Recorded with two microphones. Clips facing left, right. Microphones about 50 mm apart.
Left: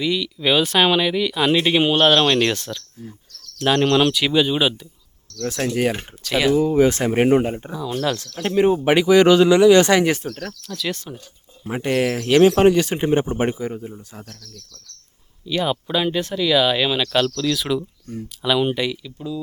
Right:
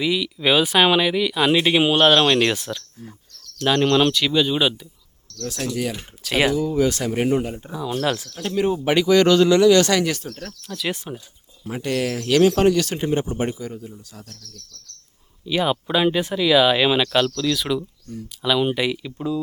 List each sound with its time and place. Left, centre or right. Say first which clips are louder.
0.0 s speech: even; centre
3.6 s speech: left 1 dB; centre
5.4 s speech: left 5 dB; left
6.5 s speech: left 4 dB; left
8.0 s speech: even; centre
8.4 s speech: left 7 dB; left
10.8 s speech: right 1 dB; centre
11.6 s speech: left 3 dB; left
15.4 s speech: right 1 dB; centre
17.1 s speech: even; centre
18.1 s speech: left 4 dB; left
18.4 s speech: left 1 dB; centre
18.8 s speech: right 1 dB; centre